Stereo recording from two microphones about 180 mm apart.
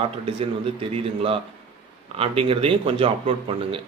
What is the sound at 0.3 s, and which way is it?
A man's voice, 30° right (ahead or behind).